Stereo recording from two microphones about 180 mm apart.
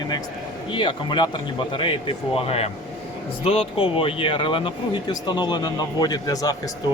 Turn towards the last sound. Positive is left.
turn(degrees=20)  # may be behind; listen again after turning